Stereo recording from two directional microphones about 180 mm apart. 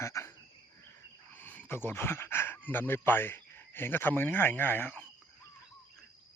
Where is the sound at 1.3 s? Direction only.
10° left (ahead or behind).